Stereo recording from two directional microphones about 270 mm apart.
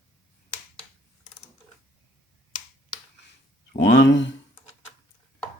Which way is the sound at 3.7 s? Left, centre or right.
Left.